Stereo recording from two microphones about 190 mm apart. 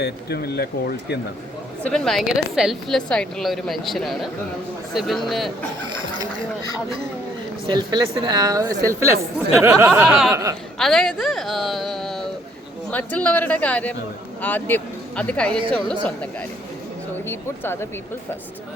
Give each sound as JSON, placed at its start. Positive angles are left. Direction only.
{"t": 0.0, "sound": "speech", "side_deg": 60}
{"t": 1.8, "sound": "a woman's voice", "side_deg": 5}
{"t": 7.7, "sound": "a woman's voice", "side_deg": -20}
{"t": 10.0, "sound": "a woman's voice", "side_deg": 0}
{"t": 10.3, "sound": "a woman's voice", "side_deg": -15}
{"t": 10.8, "sound": "a woman's voice", "side_deg": 0}